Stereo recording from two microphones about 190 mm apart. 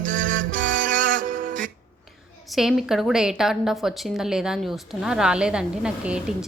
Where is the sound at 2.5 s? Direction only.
Centre (ahead or behind).